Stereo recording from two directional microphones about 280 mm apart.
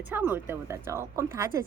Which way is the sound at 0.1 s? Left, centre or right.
Centre.